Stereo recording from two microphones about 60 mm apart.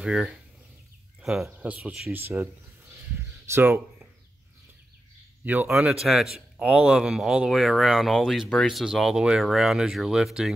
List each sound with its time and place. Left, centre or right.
0.0 s speech: centre
1.6 s speech: right
2.1 s speech: right
5.4 s speech: right
5.7 s speech: centre